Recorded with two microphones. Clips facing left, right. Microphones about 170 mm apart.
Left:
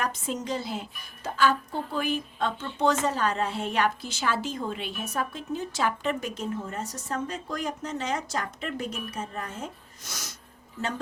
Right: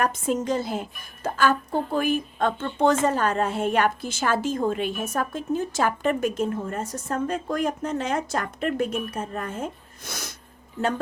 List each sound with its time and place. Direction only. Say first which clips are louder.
0.0 s a woman's voice: right 7 dB; 50° right (ahead or behind)